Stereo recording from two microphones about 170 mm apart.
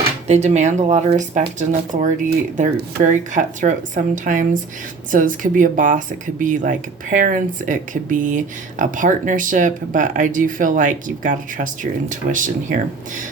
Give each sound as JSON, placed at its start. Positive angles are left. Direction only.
{"t": 0.3, "sound": "speech", "side_deg": -40}